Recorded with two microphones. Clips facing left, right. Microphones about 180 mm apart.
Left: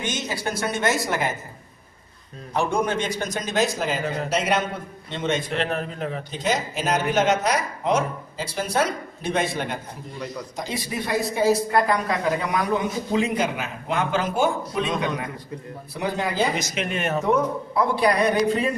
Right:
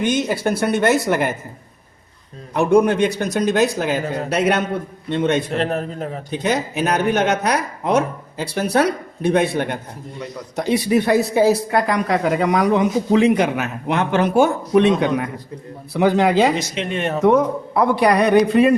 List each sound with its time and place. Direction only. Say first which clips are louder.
0.0 s speech: right 9 dB; 55° right (ahead or behind)
2.6 s speech: right 9 dB; 65° right (ahead or behind)
5.5 s a man's voice: right 4 dB; 40° right (ahead or behind)
6.3 s speech: right 6 dB; 60° right (ahead or behind)
15.9 s a man's voice: right 11 dB; 85° right
16.6 s speech: right 4 dB; 30° right (ahead or behind)
17.2 s speech: right 9 dB; 70° right (ahead or behind)